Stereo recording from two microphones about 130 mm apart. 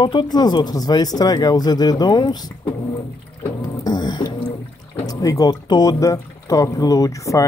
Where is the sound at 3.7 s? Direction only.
30° left (ahead or behind).